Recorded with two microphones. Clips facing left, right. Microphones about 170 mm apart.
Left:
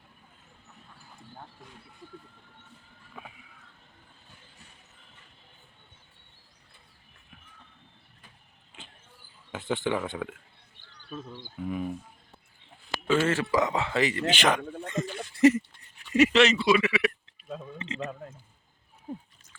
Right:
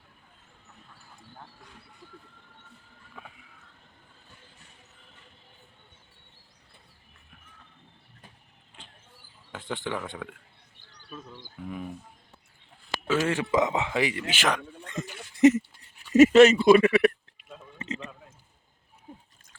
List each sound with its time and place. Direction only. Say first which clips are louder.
9.5 s speech: left 4 dB; 5° left (ahead or behind)
11.6 s speech: left 5 dB; 5° left (ahead or behind)
13.1 s speech: left 1 dB; 15° right (ahead or behind)
15.0 s a sound: right 2 dB; 20° right (ahead or behind)
16.1 s speech: right 6 dB; 45° right (ahead or behind)
17.7 s a sound: right 2 dB; 40° right (ahead or behind)